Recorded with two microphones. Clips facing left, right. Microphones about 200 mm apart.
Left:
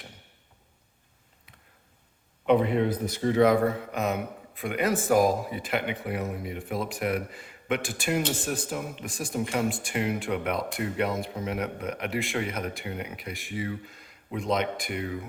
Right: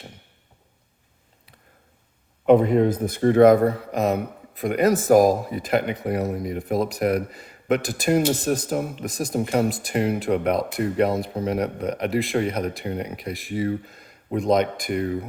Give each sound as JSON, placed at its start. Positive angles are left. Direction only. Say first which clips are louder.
{"t": 2.5, "sound": "speech", "louder": "right 6 dB", "side_deg": -45}